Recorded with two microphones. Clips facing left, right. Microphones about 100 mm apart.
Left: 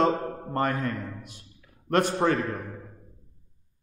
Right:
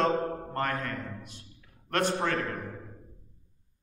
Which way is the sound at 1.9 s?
20° left (ahead or behind).